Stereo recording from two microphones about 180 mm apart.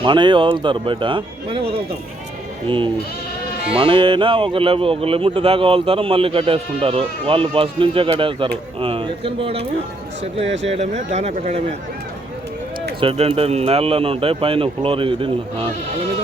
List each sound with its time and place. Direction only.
0.0 s speech: 25° right (ahead or behind)
2.6 s speech: 30° right (ahead or behind)
10.4 s speech: 80° right
10.8 s speech: 35° right (ahead or behind)
13.0 s speech: 30° right (ahead or behind)